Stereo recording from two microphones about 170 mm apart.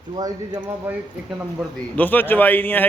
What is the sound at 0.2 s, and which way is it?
Speech, 20° right (ahead or behind).